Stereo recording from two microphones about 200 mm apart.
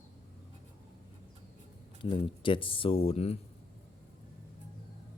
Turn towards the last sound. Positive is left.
turn(degrees=30)  # may be behind; listen again after turning